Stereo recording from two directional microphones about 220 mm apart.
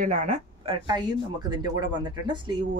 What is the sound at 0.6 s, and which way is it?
Speech, 20° right (ahead or behind).